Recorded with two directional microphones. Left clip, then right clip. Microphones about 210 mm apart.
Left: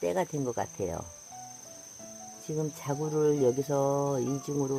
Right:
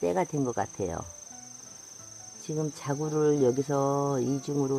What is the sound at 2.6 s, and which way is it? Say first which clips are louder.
Speech: right 1 dB; 5° right (ahead or behind).